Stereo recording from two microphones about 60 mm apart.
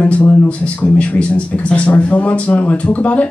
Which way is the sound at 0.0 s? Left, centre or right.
Left.